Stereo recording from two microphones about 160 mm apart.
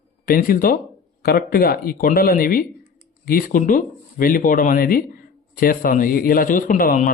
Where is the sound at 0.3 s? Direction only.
65° left (ahead or behind).